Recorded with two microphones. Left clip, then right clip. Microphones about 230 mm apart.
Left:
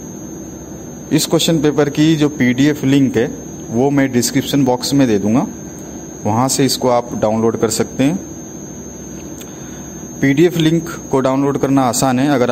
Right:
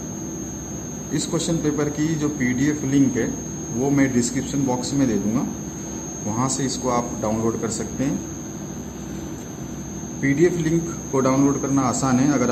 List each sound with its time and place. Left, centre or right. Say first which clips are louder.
1.1 s a man's voice: left 10 dB; left
10.2 s a man's voice: left 7 dB; left